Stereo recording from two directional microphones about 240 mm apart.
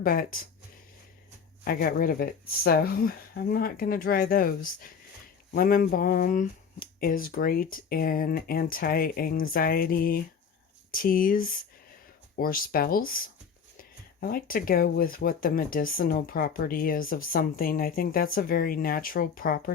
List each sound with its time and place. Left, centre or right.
0.0 s speech: left
1.6 s speech: left